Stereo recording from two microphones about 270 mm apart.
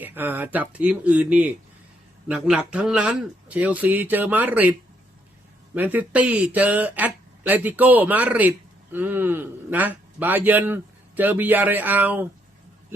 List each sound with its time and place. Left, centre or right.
0.0 s speech: centre
5.7 s speech: centre